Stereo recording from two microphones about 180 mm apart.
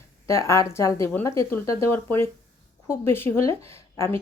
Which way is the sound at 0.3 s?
15° left (ahead or behind).